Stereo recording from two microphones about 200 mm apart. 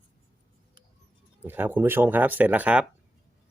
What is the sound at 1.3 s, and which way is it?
Speech, 10° right (ahead or behind).